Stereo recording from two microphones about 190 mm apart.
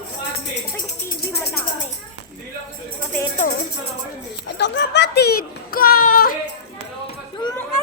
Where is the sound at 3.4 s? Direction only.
45° left (ahead or behind).